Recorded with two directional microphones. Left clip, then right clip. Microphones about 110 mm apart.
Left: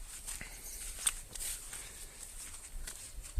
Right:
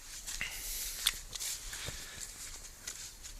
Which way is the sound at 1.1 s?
30° left (ahead or behind).